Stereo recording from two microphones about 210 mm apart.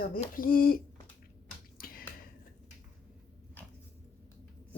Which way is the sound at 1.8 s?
45° left (ahead or behind).